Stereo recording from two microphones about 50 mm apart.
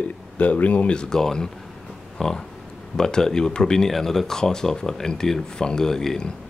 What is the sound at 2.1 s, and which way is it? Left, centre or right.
Pig, centre.